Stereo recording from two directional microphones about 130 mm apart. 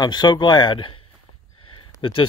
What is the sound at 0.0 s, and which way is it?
Speech, 35° left (ahead or behind).